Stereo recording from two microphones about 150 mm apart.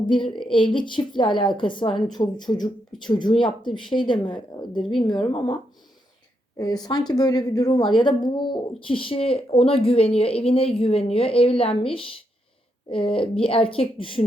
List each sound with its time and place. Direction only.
0.0 s speech: 30° left (ahead or behind)
1.9 s speech: centre (ahead or behind)
2.1 s speech: 30° left (ahead or behind)
4.8 s speech: centre (ahead or behind)
5.2 s speech: 35° left (ahead or behind)
6.6 s speech: 25° left (ahead or behind)